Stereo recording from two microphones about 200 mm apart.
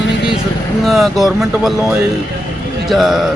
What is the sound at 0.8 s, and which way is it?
Speech, centre (ahead or behind).